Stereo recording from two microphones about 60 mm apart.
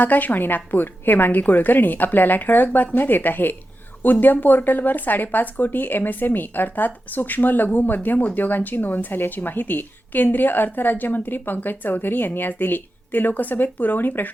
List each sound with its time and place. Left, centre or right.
0.0 s a woman's voice: left